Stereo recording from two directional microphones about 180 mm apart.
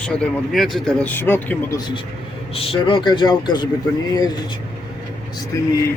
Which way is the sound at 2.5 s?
30° left (ahead or behind).